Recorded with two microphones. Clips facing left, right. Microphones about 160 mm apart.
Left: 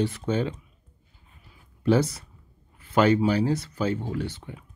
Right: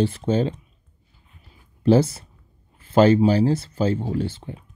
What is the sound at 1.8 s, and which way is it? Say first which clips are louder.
Speech: right 5 dB; 30° right (ahead or behind).